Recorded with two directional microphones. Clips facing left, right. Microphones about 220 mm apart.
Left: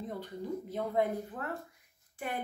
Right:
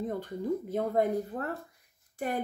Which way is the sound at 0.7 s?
45° right (ahead or behind).